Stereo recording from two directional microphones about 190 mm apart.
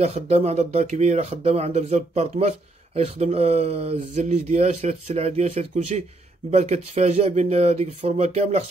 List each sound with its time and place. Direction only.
0.0 s speech: 35° right (ahead or behind)